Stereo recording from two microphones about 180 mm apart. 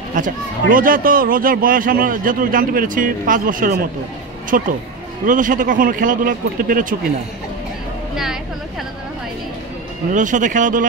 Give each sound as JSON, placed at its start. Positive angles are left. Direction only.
{"t": 0.1, "sound": "a man's voice", "side_deg": -50}
{"t": 10.1, "sound": "a man's voice", "side_deg": -45}